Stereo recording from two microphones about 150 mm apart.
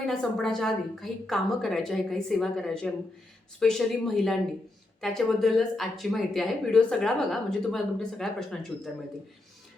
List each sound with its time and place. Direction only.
0.0 s speech: 5° left (ahead or behind)